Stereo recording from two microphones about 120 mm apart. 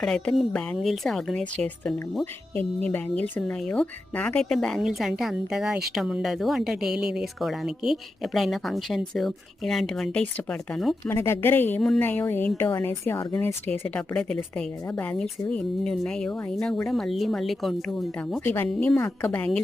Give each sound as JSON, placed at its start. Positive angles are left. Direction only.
{"t": 0.0, "sound": "speech", "side_deg": 5}
{"t": 11.1, "sound": "speech", "side_deg": 20}
{"t": 18.4, "sound": "speech", "side_deg": 15}